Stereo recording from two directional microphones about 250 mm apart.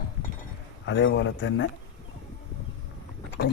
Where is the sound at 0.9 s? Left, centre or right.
Left.